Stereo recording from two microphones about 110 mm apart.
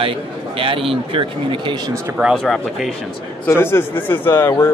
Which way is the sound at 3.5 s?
20° left (ahead or behind).